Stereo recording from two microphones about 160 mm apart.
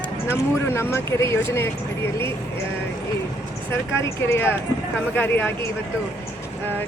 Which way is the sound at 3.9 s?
15° left (ahead or behind).